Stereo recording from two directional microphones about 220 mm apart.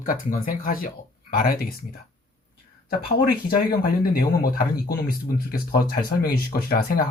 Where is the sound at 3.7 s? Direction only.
40° left (ahead or behind).